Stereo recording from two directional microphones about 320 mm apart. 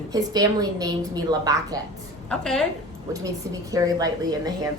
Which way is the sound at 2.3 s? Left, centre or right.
Centre.